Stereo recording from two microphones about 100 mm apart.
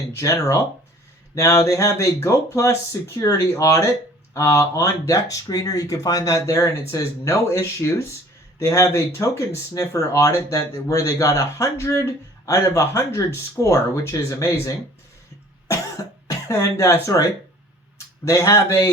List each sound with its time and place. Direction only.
0.1 s speech: 30° left (ahead or behind)
16.2 s speech: 30° left (ahead or behind)